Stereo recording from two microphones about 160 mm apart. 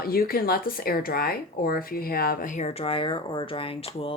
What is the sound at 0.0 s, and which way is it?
Speech, 65° left (ahead or behind).